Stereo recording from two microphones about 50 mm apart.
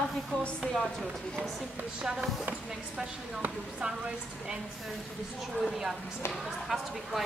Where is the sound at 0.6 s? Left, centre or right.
Centre.